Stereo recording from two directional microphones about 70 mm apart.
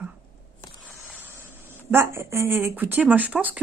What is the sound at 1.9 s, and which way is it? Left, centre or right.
Speech, right.